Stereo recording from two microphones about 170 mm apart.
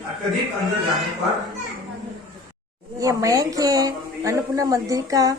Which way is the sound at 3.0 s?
20° right (ahead or behind).